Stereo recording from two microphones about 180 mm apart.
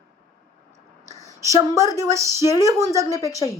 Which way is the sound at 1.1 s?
20° left (ahead or behind).